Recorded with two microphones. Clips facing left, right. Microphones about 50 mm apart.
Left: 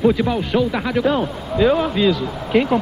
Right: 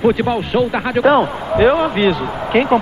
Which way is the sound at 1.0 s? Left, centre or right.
Right.